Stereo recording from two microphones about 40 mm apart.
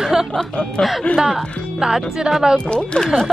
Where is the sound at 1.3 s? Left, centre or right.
Centre.